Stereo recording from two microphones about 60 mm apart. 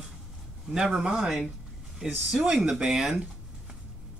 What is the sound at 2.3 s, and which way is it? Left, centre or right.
Speech, centre.